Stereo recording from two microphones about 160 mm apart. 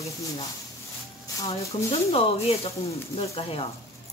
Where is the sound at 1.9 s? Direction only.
40° left (ahead or behind).